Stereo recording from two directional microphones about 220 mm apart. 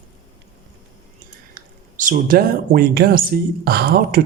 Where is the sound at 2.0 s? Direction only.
40° right (ahead or behind).